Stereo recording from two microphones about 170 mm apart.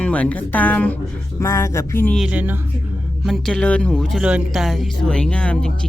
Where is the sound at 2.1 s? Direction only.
5° right (ahead or behind).